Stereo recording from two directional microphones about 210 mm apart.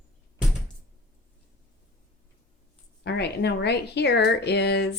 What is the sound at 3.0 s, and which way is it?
Speech, 55° left (ahead or behind).